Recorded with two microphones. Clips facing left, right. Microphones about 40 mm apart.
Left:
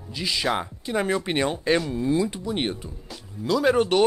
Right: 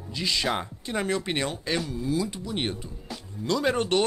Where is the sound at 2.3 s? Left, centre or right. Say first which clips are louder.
Left 3 dB; centre.